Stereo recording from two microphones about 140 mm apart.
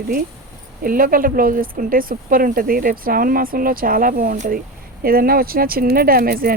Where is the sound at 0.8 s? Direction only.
90° right.